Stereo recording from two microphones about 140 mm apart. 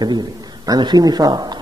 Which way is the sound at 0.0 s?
30° right (ahead or behind).